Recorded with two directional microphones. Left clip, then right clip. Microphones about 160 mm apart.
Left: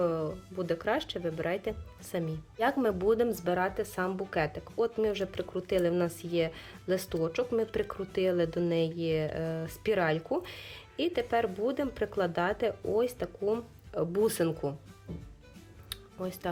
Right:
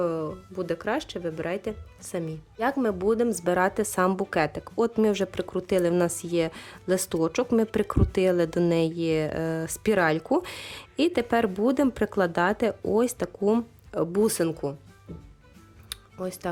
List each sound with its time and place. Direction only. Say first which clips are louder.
0.0 s a woman's voice: right 3 dB; 25° right (ahead or behind)
3.4 s speech: right 6 dB; 45° right (ahead or behind)
15.9 s music: right 4 dB; 35° right (ahead or behind)